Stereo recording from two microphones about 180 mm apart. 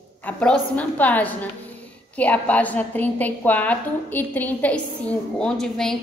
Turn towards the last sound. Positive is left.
turn(degrees=5)  # may be behind; listen again after turning